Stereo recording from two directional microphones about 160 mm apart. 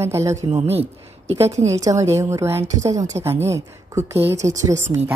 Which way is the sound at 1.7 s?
20° right (ahead or behind).